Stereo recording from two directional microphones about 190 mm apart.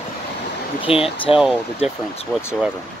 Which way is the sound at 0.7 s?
30° left (ahead or behind).